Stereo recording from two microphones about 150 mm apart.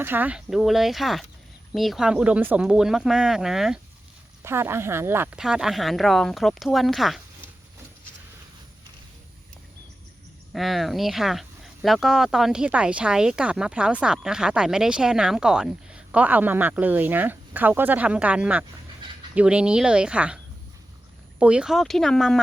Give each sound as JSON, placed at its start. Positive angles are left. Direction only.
{"t": 0.0, "sound": "speech", "side_deg": -10}
{"t": 4.4, "sound": "speech", "side_deg": -15}
{"t": 5.4, "sound": "speech", "side_deg": -5}
{"t": 10.5, "sound": "speech", "side_deg": 0}